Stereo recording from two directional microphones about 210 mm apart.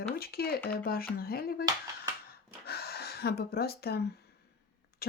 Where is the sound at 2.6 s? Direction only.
45° left (ahead or behind).